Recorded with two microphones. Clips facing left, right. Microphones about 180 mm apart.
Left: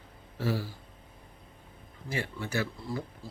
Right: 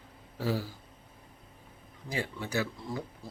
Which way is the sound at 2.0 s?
15° right (ahead or behind).